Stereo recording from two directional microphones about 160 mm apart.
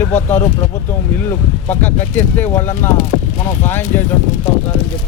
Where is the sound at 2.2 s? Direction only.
15° left (ahead or behind).